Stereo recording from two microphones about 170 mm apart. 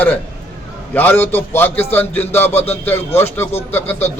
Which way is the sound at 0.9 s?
10° left (ahead or behind).